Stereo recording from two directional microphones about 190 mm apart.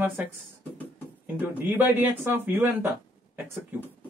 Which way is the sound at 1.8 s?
10° right (ahead or behind).